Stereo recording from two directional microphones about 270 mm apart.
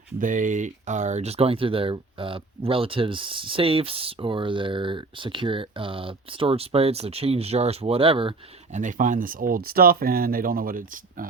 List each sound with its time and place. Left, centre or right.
0.2 s speech: right